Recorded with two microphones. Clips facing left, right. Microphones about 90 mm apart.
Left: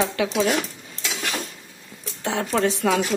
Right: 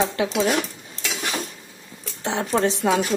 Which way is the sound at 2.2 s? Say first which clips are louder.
Even; 20° right (ahead or behind).